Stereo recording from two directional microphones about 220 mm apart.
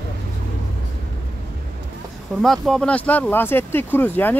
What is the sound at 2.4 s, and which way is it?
Speech, centre (ahead or behind).